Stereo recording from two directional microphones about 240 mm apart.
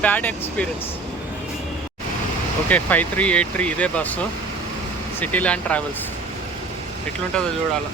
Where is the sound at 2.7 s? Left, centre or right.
Centre.